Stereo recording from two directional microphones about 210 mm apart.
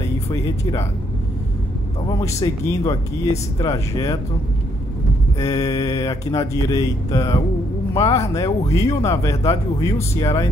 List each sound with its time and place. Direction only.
0.3 s speech: 15° left (ahead or behind)
2.2 s speech: 15° left (ahead or behind)
5.4 s speech: 15° left (ahead or behind)